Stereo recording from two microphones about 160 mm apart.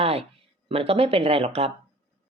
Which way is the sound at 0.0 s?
40° right (ahead or behind).